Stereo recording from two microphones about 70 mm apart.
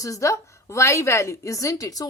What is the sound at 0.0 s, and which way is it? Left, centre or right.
A woman's voice, left.